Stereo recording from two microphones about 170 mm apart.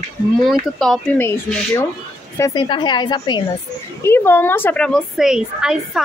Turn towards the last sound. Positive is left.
turn(degrees=-5)  # may be behind; listen again after turning